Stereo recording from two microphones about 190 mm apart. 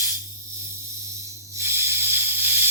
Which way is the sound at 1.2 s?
15° right (ahead or behind).